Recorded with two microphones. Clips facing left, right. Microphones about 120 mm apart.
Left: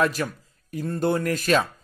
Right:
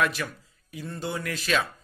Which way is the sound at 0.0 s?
40° left (ahead or behind).